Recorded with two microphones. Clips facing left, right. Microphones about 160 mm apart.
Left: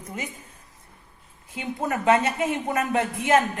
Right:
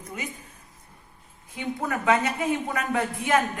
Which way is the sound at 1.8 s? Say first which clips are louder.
Left 3 dB; 25° left (ahead or behind).